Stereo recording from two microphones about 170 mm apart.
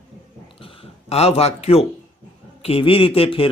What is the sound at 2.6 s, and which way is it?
Speech, 35° left (ahead or behind).